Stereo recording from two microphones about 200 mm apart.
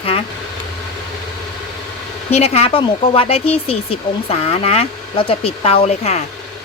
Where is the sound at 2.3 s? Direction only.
30° left (ahead or behind).